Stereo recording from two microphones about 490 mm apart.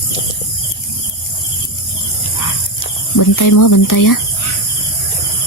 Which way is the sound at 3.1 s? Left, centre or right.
Left.